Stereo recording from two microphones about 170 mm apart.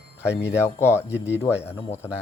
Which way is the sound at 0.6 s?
15° left (ahead or behind).